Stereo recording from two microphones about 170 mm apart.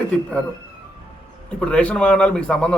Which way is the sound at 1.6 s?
5° left (ahead or behind).